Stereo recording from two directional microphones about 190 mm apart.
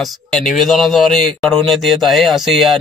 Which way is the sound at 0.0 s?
Centre (ahead or behind).